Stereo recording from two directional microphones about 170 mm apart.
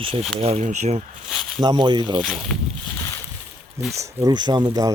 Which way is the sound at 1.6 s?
25° right (ahead or behind).